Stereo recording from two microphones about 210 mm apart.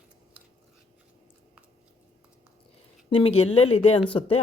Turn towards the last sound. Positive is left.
turn(degrees=25)  # may be behind; listen again after turning